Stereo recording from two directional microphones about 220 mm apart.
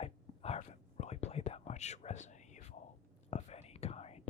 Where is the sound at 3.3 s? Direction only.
30° left (ahead or behind).